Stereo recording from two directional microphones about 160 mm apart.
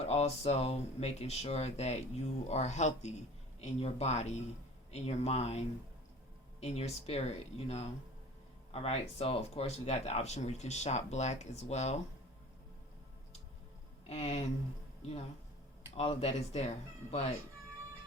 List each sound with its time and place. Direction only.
0.0 s speech: 40° left (ahead or behind)
14.1 s speech: 40° left (ahead or behind)
16.0 s speech: 40° left (ahead or behind)